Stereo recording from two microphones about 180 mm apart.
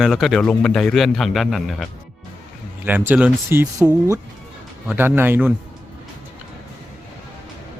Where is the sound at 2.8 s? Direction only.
10° right (ahead or behind).